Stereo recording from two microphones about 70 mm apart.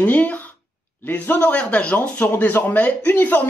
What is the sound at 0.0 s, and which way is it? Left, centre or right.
Speech, left.